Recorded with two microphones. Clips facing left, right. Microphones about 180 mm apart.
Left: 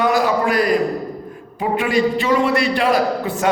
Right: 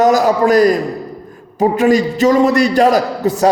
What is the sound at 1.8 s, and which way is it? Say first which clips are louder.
A man's voice: right 6 dB; 40° right (ahead or behind).